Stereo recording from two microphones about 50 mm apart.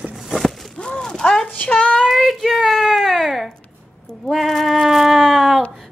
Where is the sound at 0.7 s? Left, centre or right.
Centre.